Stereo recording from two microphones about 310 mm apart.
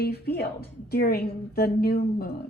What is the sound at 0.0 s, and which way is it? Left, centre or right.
A woman's voice, left.